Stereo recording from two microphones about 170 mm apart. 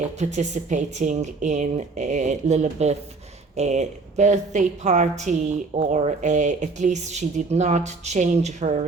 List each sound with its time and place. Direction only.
0.2 s a woman's voice: 45° right (ahead or behind)